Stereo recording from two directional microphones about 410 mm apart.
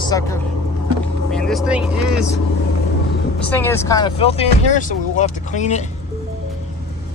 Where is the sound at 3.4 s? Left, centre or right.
Centre.